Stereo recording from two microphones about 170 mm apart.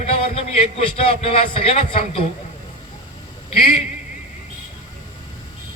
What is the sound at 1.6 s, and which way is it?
Speech, 35° left (ahead or behind).